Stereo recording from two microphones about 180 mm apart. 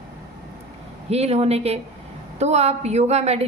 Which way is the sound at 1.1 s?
35° right (ahead or behind).